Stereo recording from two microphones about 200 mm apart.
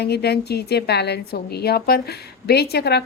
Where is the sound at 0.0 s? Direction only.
55° left (ahead or behind).